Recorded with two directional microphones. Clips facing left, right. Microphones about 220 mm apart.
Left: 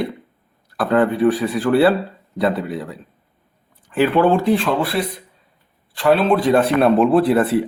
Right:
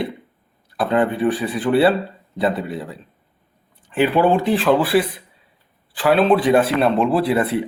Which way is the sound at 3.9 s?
Centre (ahead or behind).